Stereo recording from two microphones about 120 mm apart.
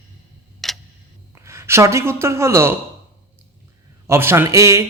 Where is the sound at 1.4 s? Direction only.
25° right (ahead or behind).